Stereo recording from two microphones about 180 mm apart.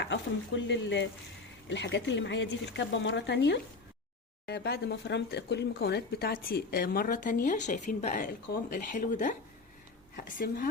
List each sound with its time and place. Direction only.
0.0 s a woman's voice: 80° left; by 10.7 s 50° left (ahead or behind)